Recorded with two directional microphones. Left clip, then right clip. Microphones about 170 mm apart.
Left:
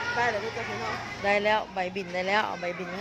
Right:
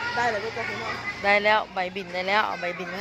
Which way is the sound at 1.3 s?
5° left (ahead or behind).